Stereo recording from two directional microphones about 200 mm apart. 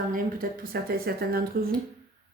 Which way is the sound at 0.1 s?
45° right (ahead or behind).